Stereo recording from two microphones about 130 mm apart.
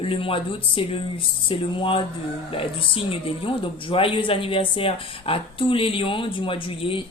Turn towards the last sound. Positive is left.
turn(degrees=40)  # may be behind; listen again after turning